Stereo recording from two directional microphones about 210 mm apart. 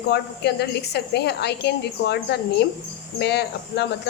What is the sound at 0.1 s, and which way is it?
A woman's voice, 50° left (ahead or behind).